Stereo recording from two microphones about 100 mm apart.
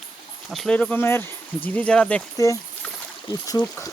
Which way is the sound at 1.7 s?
10° left (ahead or behind).